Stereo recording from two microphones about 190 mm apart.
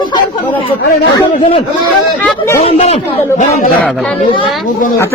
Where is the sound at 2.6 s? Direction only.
35° left (ahead or behind).